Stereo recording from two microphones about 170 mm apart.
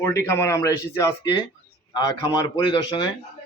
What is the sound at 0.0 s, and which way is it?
A man's voice, 15° left (ahead or behind).